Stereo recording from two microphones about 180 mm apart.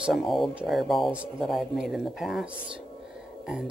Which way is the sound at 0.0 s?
Centre (ahead or behind).